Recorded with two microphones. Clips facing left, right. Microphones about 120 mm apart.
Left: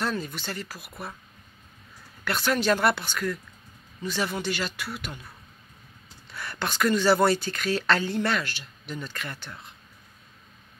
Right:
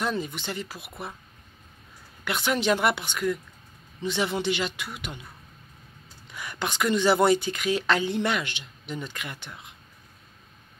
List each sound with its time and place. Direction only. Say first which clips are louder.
0.0 s speech: right 1 dB; 20° right (ahead or behind)
2.2 s speech: even; 20° right (ahead or behind)
6.3 s speech: even; 15° right (ahead or behind)